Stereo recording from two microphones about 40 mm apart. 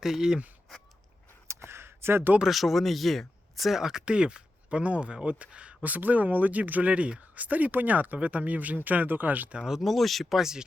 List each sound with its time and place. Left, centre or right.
0.0 s speech: centre
1.5 s a sound: right
2.5 s speech: centre
3.8 s speech: centre
4.0 s speech: right
5.8 s speech: right
9.6 s speech: centre
9.8 s speech: centre